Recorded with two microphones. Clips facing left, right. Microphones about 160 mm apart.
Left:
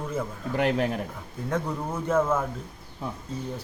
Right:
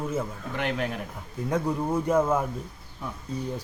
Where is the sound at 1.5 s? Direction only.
10° right (ahead or behind).